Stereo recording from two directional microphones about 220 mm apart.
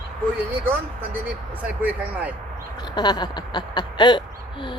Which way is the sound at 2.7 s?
20° left (ahead or behind).